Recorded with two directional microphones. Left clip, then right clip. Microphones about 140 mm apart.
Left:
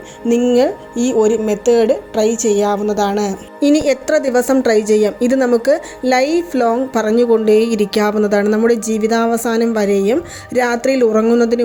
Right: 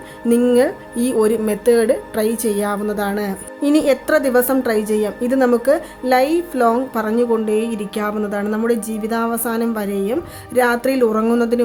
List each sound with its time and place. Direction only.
0.5 s a woman's voice: 5° left (ahead or behind)